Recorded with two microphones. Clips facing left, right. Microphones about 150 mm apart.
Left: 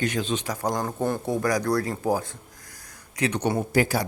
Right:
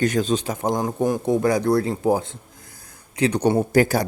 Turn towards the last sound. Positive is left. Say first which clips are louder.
# right 5 dB
turn(degrees=-45)  # may be behind; listen again after turning